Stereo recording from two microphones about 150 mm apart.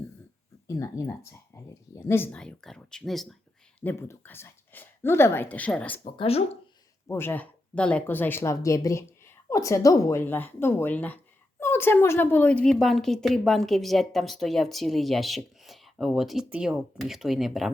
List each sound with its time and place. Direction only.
0.7 s a woman's voice: 20° left (ahead or behind); by 3.3 s centre (ahead or behind)
3.8 s speech: 15° left (ahead or behind)
6.1 s speech: 40° left (ahead or behind)
7.1 s a woman's voice: 15° left (ahead or behind); by 17.7 s centre (ahead or behind)